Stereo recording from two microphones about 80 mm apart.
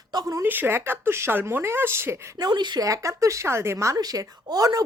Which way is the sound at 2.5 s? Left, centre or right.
Right.